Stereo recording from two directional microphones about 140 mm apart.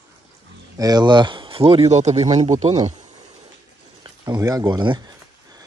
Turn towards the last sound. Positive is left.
turn(degrees=-30)  # may be behind; listen again after turning